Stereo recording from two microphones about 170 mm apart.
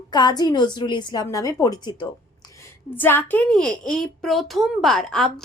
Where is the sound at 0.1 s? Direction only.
25° left (ahead or behind).